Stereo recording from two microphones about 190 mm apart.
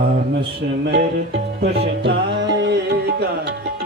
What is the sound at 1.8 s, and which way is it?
Music, 65° right (ahead or behind).